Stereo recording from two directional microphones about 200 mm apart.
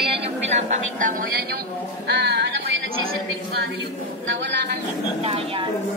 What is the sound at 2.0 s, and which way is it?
Speech, 55° right (ahead or behind).